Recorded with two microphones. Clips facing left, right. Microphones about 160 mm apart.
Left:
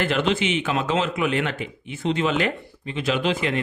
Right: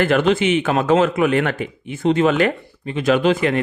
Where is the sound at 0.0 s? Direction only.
50° right (ahead or behind).